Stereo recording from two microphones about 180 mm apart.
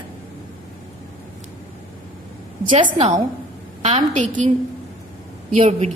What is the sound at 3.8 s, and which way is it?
Speech, 40° right (ahead or behind).